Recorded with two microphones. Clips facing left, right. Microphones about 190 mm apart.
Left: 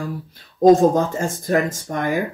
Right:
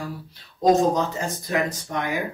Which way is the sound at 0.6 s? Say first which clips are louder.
Left 6 dB; 50° left (ahead or behind).